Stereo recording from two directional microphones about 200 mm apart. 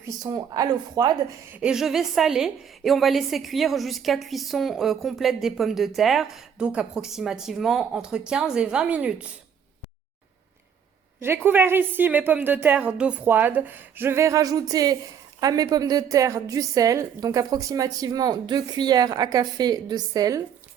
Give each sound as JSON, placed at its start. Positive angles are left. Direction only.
{"t": 0.0, "sound": "a woman's voice", "side_deg": -20}
{"t": 1.5, "sound": "a woman's voice", "side_deg": -5}
{"t": 11.2, "sound": "a woman's voice", "side_deg": -10}